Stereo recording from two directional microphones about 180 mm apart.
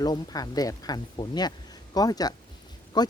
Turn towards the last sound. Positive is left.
turn(degrees=25)  # may be behind; listen again after turning